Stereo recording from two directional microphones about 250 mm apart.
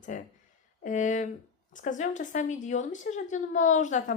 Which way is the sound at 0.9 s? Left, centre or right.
Left.